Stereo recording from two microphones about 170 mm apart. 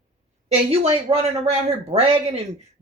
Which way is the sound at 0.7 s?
35° right (ahead or behind).